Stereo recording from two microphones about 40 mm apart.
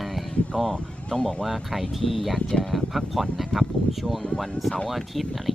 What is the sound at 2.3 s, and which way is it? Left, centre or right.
Speech, centre.